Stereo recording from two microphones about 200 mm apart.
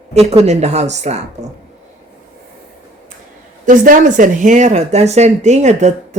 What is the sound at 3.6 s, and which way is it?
Speech, 40° right (ahead or behind).